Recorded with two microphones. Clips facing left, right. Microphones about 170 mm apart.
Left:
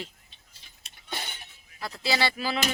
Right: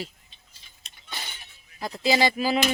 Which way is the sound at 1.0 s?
55° left (ahead or behind).